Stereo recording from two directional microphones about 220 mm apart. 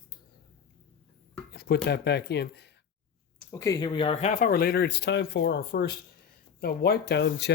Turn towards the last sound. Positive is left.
turn(degrees=50)  # may be behind; listen again after turning